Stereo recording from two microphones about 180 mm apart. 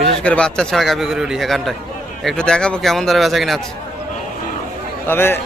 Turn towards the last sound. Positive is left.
turn(degrees=10)  # may be behind; listen again after turning